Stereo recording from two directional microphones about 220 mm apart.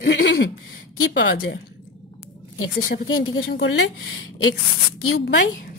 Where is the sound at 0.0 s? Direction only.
55° left (ahead or behind).